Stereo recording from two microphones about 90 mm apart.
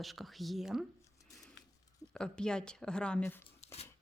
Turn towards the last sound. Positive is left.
turn(degrees=15)  # may be behind; listen again after turning